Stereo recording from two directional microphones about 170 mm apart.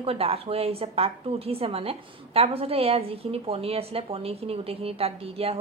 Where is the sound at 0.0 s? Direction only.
35° right (ahead or behind).